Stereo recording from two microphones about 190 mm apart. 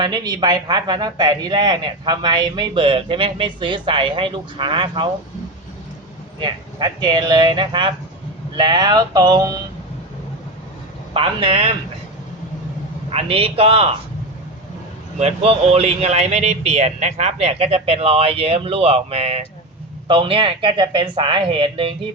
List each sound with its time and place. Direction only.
0.0 s speech: 20° right (ahead or behind)
6.4 s speech: 25° right (ahead or behind)
11.1 s speech: 30° right (ahead or behind)
13.1 s speech: 30° right (ahead or behind)
15.2 s speech: 30° right (ahead or behind)